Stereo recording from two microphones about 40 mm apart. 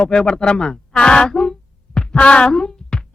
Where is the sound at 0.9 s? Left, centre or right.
Left.